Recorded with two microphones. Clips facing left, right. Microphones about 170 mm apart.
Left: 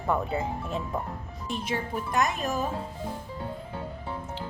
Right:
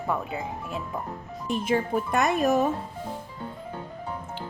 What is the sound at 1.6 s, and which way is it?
Speech, 55° right (ahead or behind).